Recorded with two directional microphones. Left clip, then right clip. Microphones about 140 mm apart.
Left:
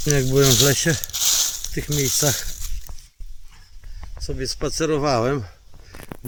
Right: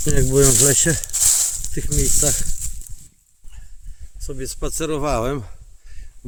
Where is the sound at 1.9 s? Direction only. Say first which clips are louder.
Left 1 dB; 90° right.